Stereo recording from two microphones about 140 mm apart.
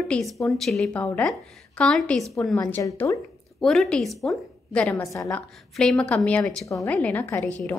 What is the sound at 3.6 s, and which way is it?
A woman's voice, 5° left (ahead or behind).